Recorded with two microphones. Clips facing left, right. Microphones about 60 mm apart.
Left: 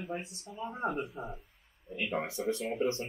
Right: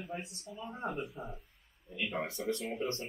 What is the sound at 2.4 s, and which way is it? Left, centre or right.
Speech, left.